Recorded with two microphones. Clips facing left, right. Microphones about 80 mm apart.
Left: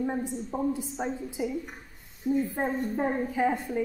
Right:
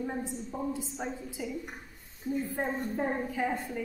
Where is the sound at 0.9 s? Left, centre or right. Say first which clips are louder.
Left 5 dB; centre.